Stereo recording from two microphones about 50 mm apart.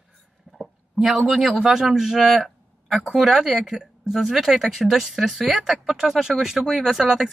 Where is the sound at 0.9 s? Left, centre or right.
Centre.